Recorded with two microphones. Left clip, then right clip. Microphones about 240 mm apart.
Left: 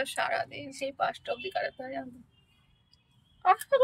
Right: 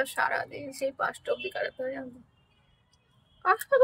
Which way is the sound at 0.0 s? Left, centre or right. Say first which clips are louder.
Right 2 dB; right.